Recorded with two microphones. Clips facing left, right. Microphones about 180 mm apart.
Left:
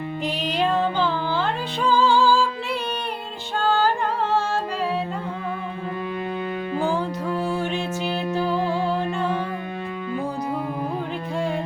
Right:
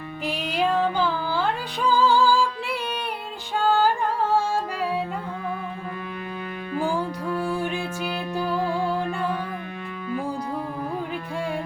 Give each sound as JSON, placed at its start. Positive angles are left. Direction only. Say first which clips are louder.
{"t": 0.3, "sound": "music", "louder": "even", "side_deg": -10}
{"t": 3.6, "sound": "music", "louder": "even", "side_deg": -10}
{"t": 7.3, "sound": "music", "louder": "left 1 dB", "side_deg": 20}
{"t": 7.6, "sound": "music", "louder": "left 2 dB", "side_deg": -10}
{"t": 8.4, "sound": "music", "louder": "even", "side_deg": 20}